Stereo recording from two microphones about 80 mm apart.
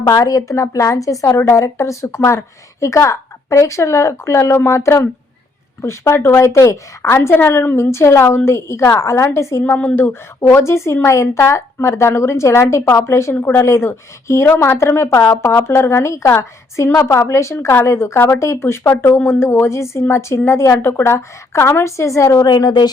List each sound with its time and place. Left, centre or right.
0.1 s a woman's voice: left
9.7 s a woman's voice: left
22.4 s a woman's voice: left